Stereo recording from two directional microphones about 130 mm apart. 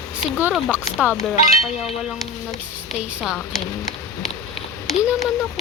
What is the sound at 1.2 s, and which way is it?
Speech, 55° left (ahead or behind).